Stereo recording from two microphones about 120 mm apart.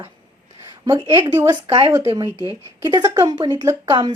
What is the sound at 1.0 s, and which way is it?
Speech, 25° right (ahead or behind).